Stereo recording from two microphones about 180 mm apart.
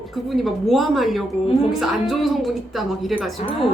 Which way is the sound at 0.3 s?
Centre (ahead or behind).